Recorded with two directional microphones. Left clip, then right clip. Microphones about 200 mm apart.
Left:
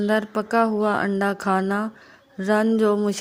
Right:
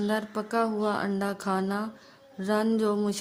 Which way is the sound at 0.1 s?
30° left (ahead or behind).